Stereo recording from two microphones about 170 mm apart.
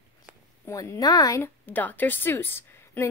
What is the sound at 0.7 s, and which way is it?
Speech, 20° left (ahead or behind).